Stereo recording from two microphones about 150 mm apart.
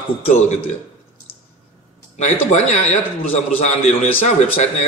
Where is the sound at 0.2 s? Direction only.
45° left (ahead or behind).